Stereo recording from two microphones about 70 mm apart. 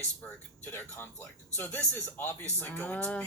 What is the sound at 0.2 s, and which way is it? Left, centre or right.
Speech, centre.